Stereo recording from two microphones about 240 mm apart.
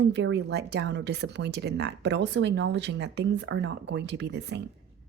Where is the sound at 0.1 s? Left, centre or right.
Right.